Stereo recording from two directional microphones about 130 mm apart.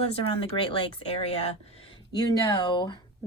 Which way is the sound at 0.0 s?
50° left (ahead or behind).